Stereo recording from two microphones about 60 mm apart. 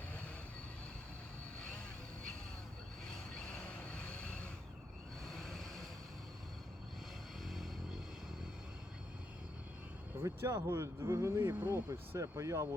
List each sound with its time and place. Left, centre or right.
3.9 s train: centre
5.2 s vehicle: centre
7.4 s vehicle: centre
10.2 s speech: right